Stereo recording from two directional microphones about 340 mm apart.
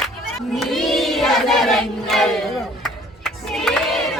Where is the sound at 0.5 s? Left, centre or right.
Centre.